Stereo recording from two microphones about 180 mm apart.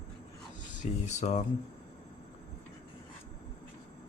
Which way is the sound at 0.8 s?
40° left (ahead or behind).